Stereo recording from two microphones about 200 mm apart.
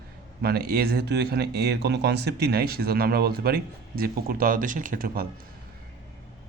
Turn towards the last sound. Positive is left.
turn(degrees=-45)  # may be behind; listen again after turning